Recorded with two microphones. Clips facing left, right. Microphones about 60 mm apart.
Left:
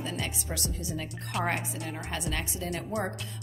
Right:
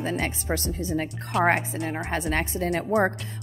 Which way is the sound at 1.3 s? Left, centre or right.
Centre.